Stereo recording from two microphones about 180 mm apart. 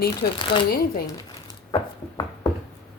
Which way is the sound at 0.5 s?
60° left (ahead or behind).